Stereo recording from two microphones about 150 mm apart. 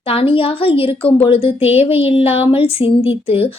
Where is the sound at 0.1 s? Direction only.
40° left (ahead or behind).